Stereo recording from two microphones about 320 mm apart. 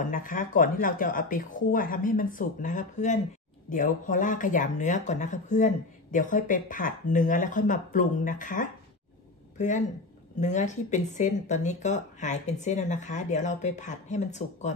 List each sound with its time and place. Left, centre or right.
0.0 s speech: left